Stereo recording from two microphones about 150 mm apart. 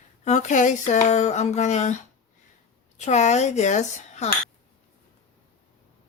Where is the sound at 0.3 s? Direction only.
50° left (ahead or behind).